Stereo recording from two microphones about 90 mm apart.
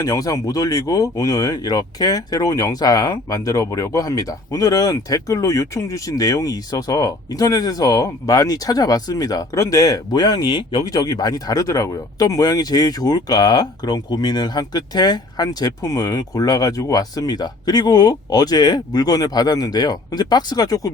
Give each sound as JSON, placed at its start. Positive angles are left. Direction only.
{"t": 0.0, "sound": "speech", "side_deg": 40}